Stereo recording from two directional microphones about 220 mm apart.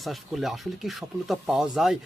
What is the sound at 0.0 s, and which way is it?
Speech, centre (ahead or behind).